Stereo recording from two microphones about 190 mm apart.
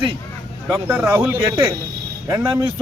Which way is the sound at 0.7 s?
10° right (ahead or behind).